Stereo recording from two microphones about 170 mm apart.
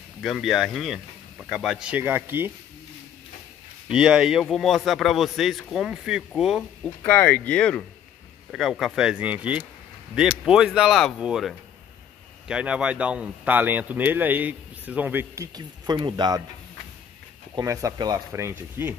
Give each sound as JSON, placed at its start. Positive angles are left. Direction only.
{"t": 0.2, "sound": "speech", "side_deg": 0}
{"t": 3.9, "sound": "speech", "side_deg": -5}
{"t": 7.1, "sound": "speech", "side_deg": 10}
{"t": 15.5, "sound": "speech", "side_deg": -25}
{"t": 17.6, "sound": "speech", "side_deg": -20}